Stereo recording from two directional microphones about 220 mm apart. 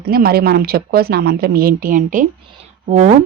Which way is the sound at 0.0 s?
45° right (ahead or behind).